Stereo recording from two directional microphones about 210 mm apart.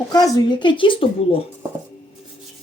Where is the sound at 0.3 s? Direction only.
20° left (ahead or behind).